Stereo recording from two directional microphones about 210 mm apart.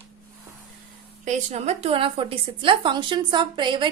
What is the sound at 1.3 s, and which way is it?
A woman's voice, 30° right (ahead or behind).